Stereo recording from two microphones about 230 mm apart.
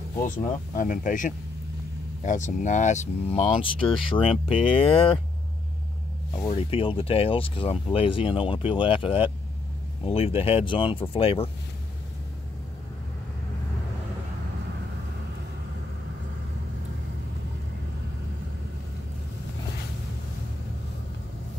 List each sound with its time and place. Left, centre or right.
0.2 s speech: left
6.3 s speech: left